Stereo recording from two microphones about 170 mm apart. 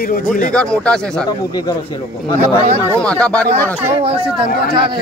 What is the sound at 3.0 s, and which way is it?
Speech, 5° left (ahead or behind).